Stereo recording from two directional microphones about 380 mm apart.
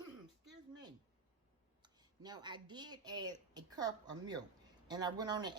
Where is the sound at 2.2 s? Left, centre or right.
Centre.